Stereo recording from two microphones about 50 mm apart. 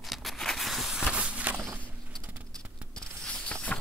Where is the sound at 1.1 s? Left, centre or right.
Right.